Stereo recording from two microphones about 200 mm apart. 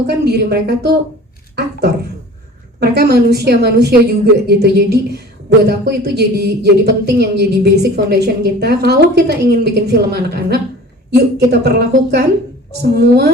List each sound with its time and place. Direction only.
0.1 s a woman's voice: 55° right (ahead or behind)
2.8 s a woman's voice: 55° right (ahead or behind)